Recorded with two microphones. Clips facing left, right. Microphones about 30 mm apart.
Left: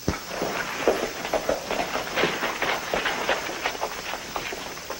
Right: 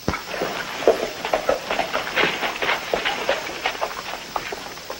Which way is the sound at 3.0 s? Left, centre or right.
Centre.